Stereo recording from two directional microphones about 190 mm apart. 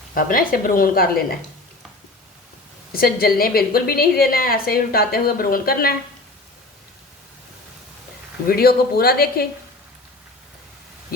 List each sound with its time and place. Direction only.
0.1 s a woman's voice: 50° left (ahead or behind)
2.9 s a woman's voice: 50° left (ahead or behind)
8.4 s a woman's voice: 55° left (ahead or behind)